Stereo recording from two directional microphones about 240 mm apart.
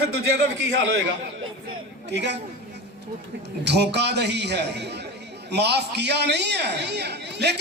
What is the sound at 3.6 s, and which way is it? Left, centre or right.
A man's voice, right.